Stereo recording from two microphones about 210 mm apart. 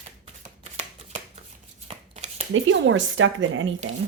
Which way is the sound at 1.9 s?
30° right (ahead or behind).